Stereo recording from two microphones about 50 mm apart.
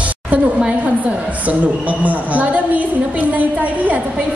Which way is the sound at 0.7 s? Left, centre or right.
Right.